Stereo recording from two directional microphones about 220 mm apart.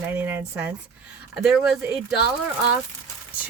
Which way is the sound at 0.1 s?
10° right (ahead or behind).